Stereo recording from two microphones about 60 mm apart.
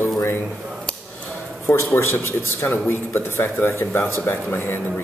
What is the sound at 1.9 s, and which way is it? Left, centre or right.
Speech, left.